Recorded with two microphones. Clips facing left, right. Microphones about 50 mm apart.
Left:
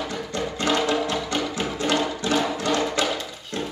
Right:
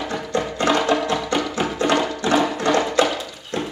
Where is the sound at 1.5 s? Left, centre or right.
Right.